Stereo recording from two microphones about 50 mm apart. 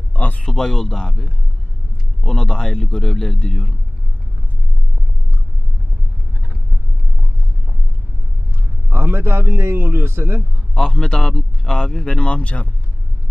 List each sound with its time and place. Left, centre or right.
0.1 s speech: left
0.5 s a man's voice: centre
8.9 s a man's voice: right
10.7 s a man's voice: centre